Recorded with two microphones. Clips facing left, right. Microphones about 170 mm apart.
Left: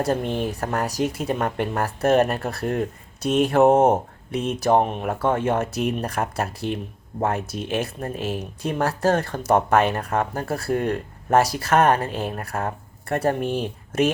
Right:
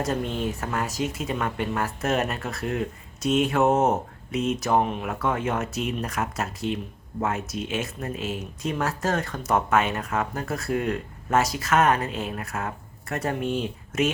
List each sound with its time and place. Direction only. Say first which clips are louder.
0.3 s speech: left 3 dB; 50° left (ahead or behind)
0.6 s speech: left 4 dB; 40° left (ahead or behind)
3.6 s speech: left 7 dB; 55° left (ahead or behind)
4.3 s speech: left 3 dB; 35° left (ahead or behind)
4.8 s speech: left 3 dB; 45° left (ahead or behind)
5.2 s speech: left 5 dB; 30° left (ahead or behind)